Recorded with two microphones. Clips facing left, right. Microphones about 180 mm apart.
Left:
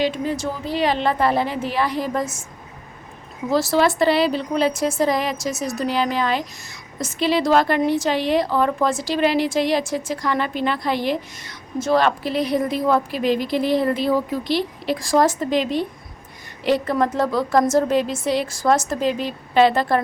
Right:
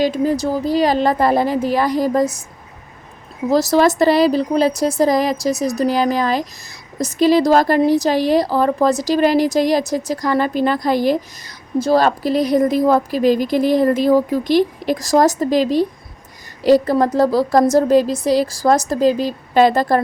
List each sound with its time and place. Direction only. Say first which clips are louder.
0.0 s speech: right 5 dB; 40° right (ahead or behind)
3.5 s speech: right 4 dB; 40° right (ahead or behind)